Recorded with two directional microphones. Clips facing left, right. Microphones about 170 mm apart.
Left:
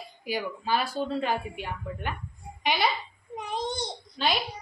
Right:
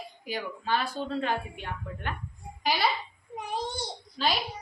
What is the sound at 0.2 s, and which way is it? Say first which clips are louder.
A woman's voice: left 4 dB; 10° left (ahead or behind).